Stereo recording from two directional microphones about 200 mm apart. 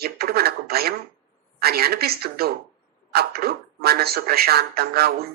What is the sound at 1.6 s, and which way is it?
Speech, 50° right (ahead or behind).